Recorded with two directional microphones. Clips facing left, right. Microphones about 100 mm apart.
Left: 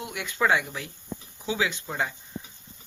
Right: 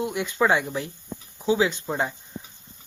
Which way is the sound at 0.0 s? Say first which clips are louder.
Right 4 dB; 30° right (ahead or behind).